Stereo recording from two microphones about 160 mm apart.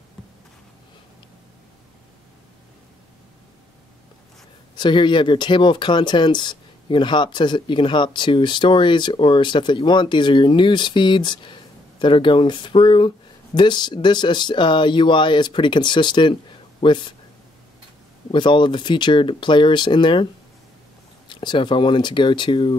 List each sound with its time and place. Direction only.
4.7 s speech: 30° left (ahead or behind)
18.3 s speech: 30° left (ahead or behind)
21.3 s speech: 30° left (ahead or behind)